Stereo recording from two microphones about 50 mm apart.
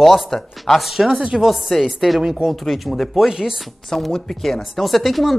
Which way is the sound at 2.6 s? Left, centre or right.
Centre.